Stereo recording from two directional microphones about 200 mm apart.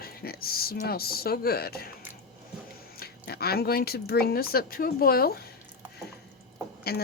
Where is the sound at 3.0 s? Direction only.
50° left (ahead or behind).